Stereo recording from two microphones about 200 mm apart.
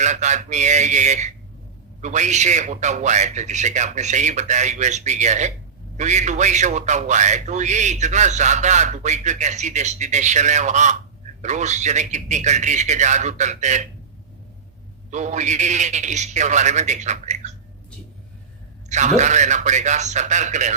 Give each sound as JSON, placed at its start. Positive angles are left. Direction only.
{"t": 0.0, "sound": "a man's voice", "side_deg": -35}
{"t": 15.1, "sound": "a man's voice", "side_deg": -35}
{"t": 18.9, "sound": "a man's voice", "side_deg": -35}